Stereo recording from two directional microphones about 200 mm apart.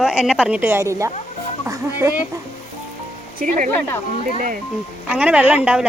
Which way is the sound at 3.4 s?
45° right (ahead or behind).